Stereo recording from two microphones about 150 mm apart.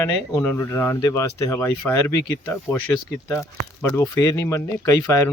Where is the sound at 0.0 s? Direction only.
20° left (ahead or behind).